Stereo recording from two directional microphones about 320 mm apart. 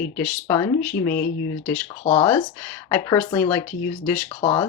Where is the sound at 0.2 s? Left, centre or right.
Centre.